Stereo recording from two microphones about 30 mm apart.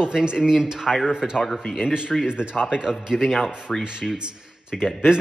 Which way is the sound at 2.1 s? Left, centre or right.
Centre.